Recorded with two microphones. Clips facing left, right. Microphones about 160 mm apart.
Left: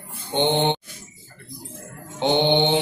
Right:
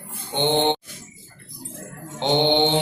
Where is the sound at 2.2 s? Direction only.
10° left (ahead or behind).